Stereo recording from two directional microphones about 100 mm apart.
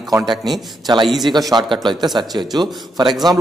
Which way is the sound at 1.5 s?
50° right (ahead or behind).